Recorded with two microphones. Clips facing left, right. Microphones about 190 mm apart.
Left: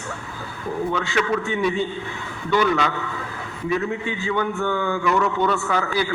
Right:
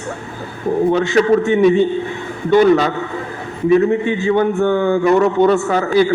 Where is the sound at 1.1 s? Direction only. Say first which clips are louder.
Right 10 dB; 40° right (ahead or behind).